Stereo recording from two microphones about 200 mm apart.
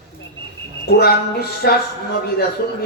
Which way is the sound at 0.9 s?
55° left (ahead or behind).